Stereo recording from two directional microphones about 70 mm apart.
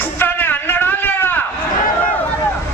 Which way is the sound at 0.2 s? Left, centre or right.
Left.